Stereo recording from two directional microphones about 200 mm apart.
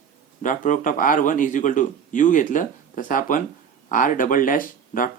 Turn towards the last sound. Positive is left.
turn(degrees=45)  # may be behind; listen again after turning